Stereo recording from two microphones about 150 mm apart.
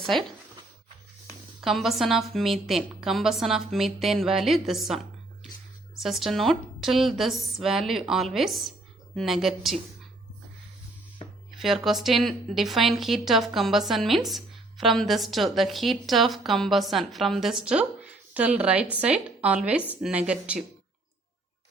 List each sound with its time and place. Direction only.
0.0 s speech: centre (ahead or behind)
1.6 s a woman's voice: centre (ahead or behind)
6.0 s a woman's voice: centre (ahead or behind)
11.5 s a woman's voice: centre (ahead or behind)